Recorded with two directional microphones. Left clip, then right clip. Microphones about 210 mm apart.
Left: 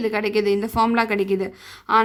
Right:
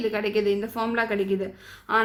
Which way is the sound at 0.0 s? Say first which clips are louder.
Left 3 dB; 35° left (ahead or behind).